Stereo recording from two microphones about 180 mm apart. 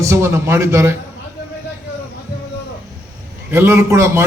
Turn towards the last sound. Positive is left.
turn(degrees=-15)  # may be behind; listen again after turning